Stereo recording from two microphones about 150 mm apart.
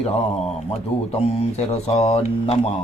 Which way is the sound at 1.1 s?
45° left (ahead or behind).